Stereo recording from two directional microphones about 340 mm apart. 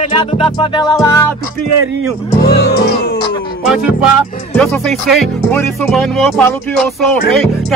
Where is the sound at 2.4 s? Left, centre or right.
Left.